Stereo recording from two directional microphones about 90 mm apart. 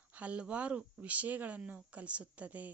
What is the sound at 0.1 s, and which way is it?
Speech, 15° right (ahead or behind).